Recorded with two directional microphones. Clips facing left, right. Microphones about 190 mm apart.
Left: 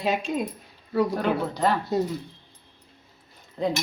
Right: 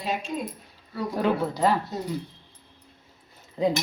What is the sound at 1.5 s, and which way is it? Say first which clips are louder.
Speech: right 1 dB; 10° right (ahead or behind).